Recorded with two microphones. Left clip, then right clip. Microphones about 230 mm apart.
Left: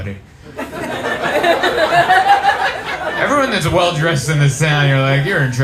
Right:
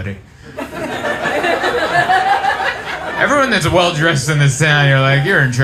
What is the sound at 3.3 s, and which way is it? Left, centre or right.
Speech, right.